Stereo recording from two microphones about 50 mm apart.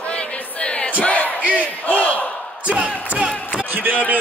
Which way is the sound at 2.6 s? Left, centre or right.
Right.